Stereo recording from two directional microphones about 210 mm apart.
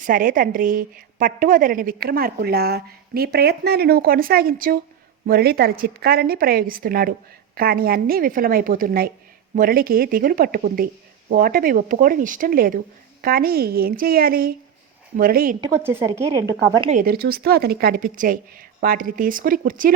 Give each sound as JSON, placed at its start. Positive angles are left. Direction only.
{"t": 0.0, "sound": "a woman's voice", "side_deg": -40}
{"t": 15.6, "sound": "a woman's voice", "side_deg": -10}
{"t": 16.9, "sound": "a woman's voice", "side_deg": -45}